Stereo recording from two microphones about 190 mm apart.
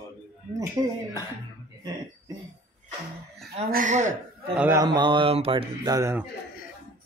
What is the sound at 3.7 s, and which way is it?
Speech, 45° right (ahead or behind).